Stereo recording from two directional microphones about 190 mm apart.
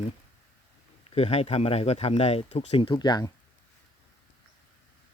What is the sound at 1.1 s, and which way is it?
Speech, 35° left (ahead or behind).